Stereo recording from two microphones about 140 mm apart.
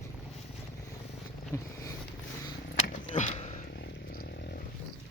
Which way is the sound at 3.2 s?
55° left (ahead or behind).